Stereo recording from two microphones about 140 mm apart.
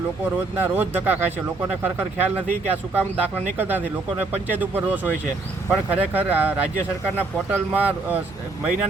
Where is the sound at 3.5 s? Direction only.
15° right (ahead or behind).